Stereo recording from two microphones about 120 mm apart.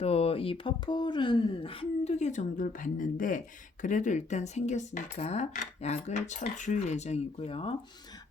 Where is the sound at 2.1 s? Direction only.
85° left; by 7.9 s 50° left (ahead or behind).